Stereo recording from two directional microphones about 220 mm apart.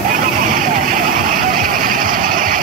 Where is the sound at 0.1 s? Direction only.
40° right (ahead or behind).